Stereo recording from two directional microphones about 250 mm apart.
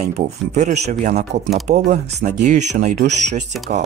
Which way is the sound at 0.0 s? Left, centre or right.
Right.